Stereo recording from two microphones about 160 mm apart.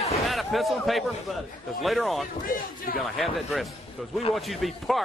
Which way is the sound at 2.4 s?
65° left (ahead or behind).